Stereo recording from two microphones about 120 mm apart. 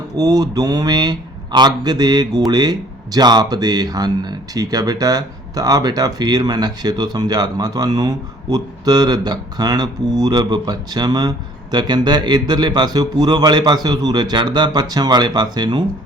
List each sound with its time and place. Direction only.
0.2 s speech: 30° right (ahead or behind)